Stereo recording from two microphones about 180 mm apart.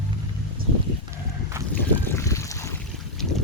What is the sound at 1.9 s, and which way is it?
Boat, 10° left (ahead or behind).